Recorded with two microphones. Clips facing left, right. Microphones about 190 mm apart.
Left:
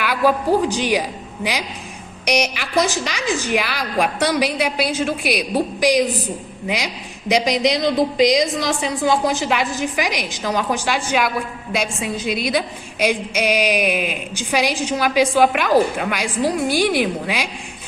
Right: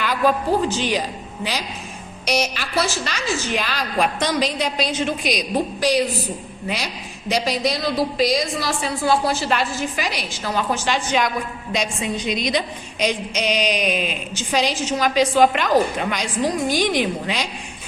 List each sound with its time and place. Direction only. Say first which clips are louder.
0.0 s a woman's voice: left 2 dB; 10° left (ahead or behind)